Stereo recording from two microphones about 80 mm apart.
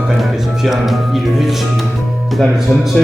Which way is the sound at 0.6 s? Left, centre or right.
Centre.